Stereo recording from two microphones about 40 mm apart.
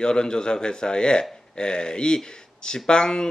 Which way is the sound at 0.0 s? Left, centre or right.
Left.